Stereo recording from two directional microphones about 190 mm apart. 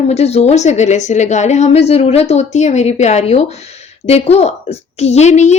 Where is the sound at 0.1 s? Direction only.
35° left (ahead or behind).